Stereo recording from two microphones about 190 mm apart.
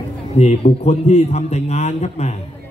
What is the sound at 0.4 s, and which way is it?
A man's voice, 35° left (ahead or behind).